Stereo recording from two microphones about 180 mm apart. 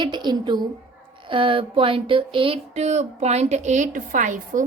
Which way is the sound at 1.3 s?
30° right (ahead or behind).